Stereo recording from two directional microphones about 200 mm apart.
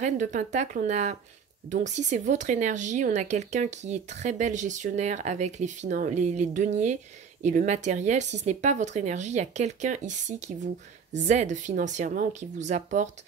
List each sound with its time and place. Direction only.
0.0 s speech: 40° right (ahead or behind)